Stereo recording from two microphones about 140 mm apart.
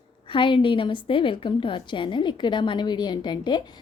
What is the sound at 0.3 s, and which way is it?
A woman's voice, 35° left (ahead or behind).